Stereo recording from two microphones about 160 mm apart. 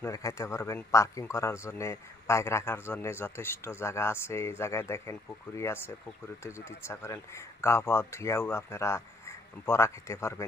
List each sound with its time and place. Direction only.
0.0 s speech: 20° left (ahead or behind)